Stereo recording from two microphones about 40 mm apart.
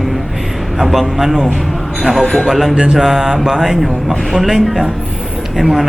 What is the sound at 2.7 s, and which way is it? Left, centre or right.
Mantra, right.